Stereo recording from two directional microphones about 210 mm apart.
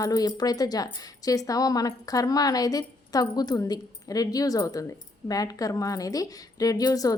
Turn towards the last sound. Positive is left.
turn(degrees=15)  # may be behind; listen again after turning